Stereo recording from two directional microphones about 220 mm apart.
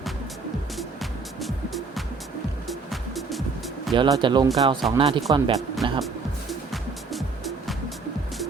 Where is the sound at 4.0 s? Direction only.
20° right (ahead or behind).